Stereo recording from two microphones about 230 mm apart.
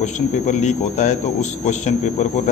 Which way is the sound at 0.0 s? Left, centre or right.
Left.